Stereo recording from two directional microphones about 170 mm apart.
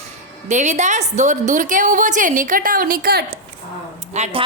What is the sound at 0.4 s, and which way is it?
A woman's voice, 45° right (ahead or behind).